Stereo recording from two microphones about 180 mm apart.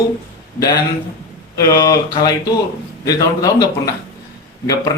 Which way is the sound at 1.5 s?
20° left (ahead or behind).